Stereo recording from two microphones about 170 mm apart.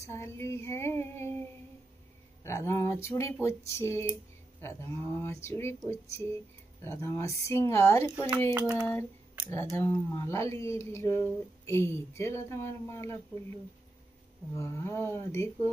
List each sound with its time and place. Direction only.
0.0 s speech: 15° left (ahead or behind)
2.4 s speech: 15° left (ahead or behind)
9.5 s speech: 15° left (ahead or behind)